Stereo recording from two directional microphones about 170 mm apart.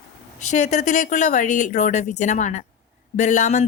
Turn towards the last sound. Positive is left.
turn(degrees=45)  # may be behind; listen again after turning